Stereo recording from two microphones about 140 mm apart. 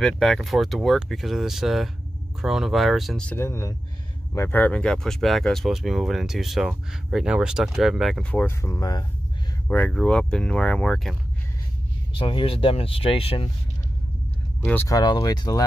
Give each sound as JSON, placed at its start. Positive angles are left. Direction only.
{"t": 0.0, "sound": "speech", "side_deg": 0}
{"t": 3.3, "sound": "speech", "side_deg": 20}
{"t": 8.3, "sound": "speech", "side_deg": 15}
{"t": 9.7, "sound": "speech", "side_deg": 10}
{"t": 12.2, "sound": "speech", "side_deg": 40}
{"t": 14.6, "sound": "speech", "side_deg": 15}
{"t": 14.9, "sound": "speech", "side_deg": 30}